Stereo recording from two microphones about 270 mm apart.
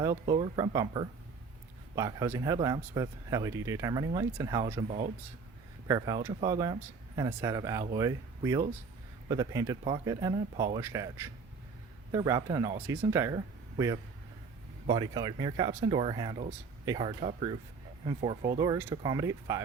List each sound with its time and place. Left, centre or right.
0.0 s speech: centre